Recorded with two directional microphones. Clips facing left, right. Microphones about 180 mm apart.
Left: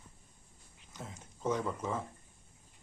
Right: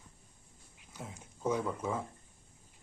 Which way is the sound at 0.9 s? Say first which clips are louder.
Right 1 dB; 10° right (ahead or behind).